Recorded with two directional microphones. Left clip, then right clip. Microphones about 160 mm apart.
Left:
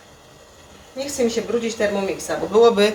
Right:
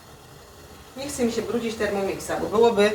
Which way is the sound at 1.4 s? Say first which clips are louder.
Left 3 dB; 55° left (ahead or behind).